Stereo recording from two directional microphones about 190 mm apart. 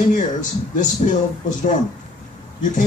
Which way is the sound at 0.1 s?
40° left (ahead or behind).